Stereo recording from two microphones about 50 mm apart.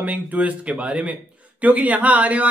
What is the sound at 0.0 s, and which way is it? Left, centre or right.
Speech, right.